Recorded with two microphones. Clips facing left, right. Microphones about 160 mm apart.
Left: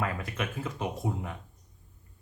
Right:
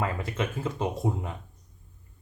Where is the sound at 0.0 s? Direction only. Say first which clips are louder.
Right 3 dB; 25° right (ahead or behind).